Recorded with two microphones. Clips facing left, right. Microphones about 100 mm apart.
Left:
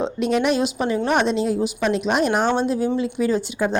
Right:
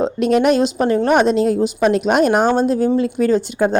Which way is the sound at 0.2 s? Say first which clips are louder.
Right 5 dB; 55° right (ahead or behind).